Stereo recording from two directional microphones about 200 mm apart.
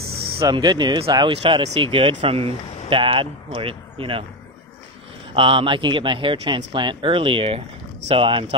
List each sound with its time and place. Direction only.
0.4 s speech: 20° right (ahead or behind)
5.3 s speech: 25° right (ahead or behind)